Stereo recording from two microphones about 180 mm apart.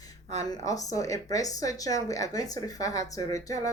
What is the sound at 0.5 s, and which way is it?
A woman's voice, 20° left (ahead or behind).